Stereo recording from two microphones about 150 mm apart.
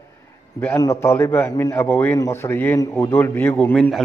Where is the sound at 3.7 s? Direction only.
5° left (ahead or behind).